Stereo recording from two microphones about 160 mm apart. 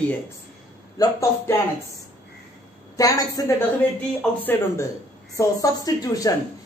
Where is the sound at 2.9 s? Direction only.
25° left (ahead or behind).